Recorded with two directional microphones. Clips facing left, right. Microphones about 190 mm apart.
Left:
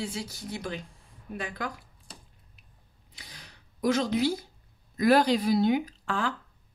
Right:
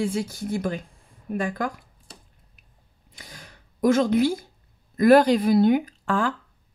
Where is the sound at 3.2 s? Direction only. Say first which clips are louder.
Right 5 dB; 50° right (ahead or behind).